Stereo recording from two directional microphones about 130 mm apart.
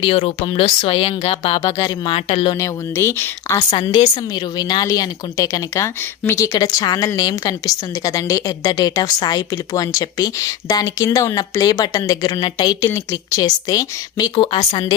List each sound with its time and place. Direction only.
0.0 s speech: 45° left (ahead or behind)
1.6 s speech: 25° left (ahead or behind)
2.0 s speech: 45° left (ahead or behind)
2.6 s speech: 20° left (ahead or behind)
3.8 s speech: 40° left (ahead or behind)
14.3 s speech: 40° left (ahead or behind)